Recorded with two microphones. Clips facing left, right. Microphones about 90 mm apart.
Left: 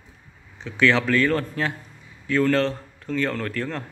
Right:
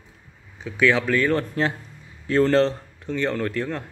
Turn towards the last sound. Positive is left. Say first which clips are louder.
# right 2 dB
turn(degrees=-20)  # may be behind; listen again after turning